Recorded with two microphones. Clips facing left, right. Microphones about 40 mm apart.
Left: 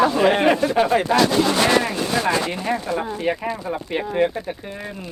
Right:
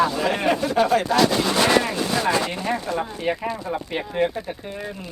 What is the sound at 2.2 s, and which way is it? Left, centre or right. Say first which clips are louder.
Speech: left 1 dB; left.